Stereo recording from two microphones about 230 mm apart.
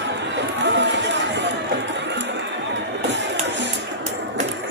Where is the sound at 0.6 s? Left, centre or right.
Right.